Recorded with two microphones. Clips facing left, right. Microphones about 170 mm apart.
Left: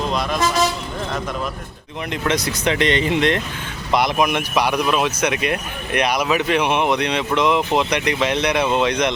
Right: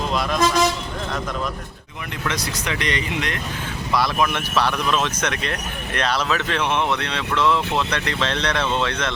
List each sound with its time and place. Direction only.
0.1 s toot: centre (ahead or behind)
2.6 s speech: 25° left (ahead or behind)